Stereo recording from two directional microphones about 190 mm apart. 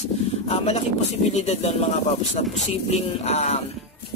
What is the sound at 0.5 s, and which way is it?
Speech, 35° left (ahead or behind).